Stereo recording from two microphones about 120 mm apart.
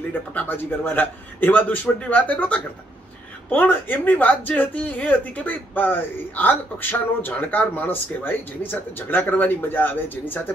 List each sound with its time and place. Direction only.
0.1 s speech: 15° left (ahead or behind)